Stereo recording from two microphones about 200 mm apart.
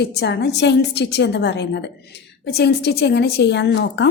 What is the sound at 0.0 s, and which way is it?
Speech, 55° left (ahead or behind).